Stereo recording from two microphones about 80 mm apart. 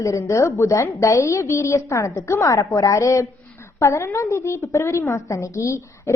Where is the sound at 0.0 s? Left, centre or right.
Left.